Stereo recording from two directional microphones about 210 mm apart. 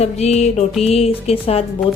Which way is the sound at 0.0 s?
30° left (ahead or behind).